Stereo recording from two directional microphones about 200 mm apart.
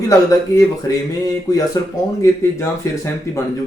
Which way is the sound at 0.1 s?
15° left (ahead or behind).